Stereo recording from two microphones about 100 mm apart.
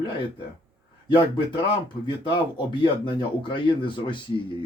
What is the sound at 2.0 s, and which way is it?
Speech, 55° left (ahead or behind).